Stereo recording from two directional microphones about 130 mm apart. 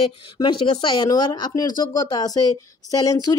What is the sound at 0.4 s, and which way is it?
A woman's voice, 35° left (ahead or behind).